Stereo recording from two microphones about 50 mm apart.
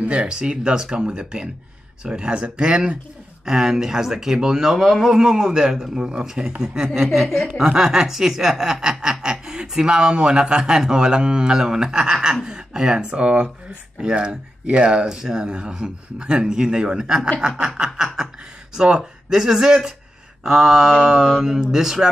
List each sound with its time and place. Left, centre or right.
0.1 s speech: centre